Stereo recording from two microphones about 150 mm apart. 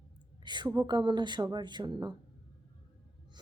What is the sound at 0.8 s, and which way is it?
A woman's voice, 30° right (ahead or behind).